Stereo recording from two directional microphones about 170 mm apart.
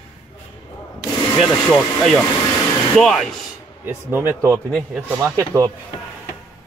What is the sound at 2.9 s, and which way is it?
Speech, centre (ahead or behind).